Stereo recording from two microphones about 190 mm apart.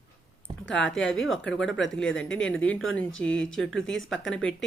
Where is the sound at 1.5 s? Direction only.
5° left (ahead or behind).